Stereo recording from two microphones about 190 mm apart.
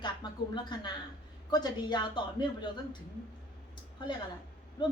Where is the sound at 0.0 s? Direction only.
25° left (ahead or behind).